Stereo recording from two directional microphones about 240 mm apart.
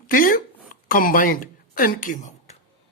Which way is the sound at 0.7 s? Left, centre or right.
Left.